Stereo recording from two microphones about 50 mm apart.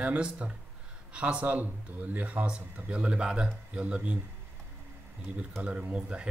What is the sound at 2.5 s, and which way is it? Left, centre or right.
Speech, right.